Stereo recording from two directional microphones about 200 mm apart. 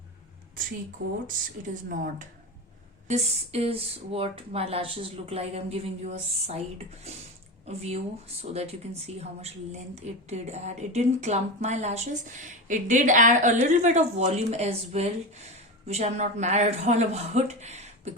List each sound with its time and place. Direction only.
1.6 s speech: 40° right (ahead or behind)
7.7 s speech: 30° right (ahead or behind)